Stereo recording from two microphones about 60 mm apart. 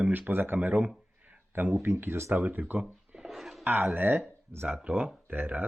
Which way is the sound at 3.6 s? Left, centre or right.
Right.